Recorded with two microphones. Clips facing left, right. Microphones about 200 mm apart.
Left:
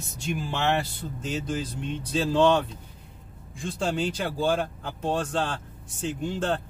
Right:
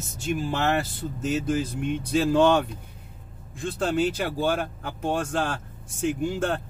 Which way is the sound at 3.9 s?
5° right (ahead or behind).